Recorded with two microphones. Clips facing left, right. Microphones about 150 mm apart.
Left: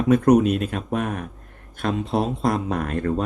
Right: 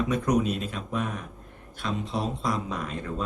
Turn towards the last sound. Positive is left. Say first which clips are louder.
# left 8 dB
turn(degrees=60)  # may be behind; listen again after turning